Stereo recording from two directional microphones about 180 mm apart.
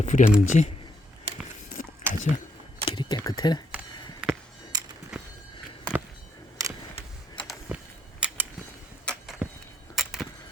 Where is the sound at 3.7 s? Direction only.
5° right (ahead or behind).